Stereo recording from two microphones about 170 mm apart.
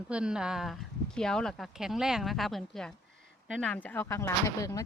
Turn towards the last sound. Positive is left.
turn(degrees=20)  # may be behind; listen again after turning